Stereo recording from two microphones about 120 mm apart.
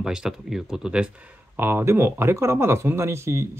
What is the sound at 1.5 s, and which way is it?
Speech, 20° right (ahead or behind).